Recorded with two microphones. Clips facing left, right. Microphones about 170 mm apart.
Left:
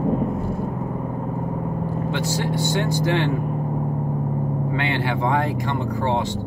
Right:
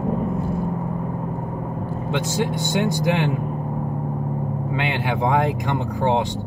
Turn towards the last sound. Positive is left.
turn(degrees=-15)  # may be behind; listen again after turning